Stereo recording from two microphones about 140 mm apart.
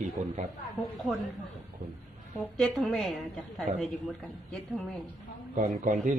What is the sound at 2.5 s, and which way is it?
A woman's voice, 5° left (ahead or behind).